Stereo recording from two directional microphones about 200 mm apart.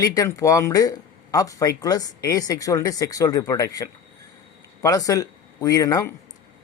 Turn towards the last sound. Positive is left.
turn(degrees=15)  # may be behind; listen again after turning